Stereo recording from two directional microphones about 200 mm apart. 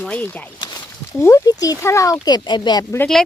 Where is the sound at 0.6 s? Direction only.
20° left (ahead or behind).